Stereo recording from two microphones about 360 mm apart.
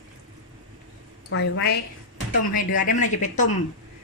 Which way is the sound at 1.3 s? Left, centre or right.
Left.